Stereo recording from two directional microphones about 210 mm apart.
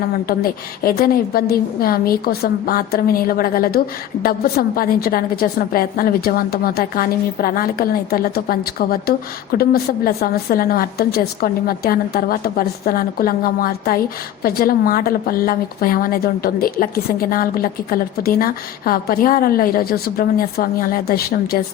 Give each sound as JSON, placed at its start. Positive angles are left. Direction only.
{"t": 0.3, "sound": "a woman's voice", "side_deg": 45}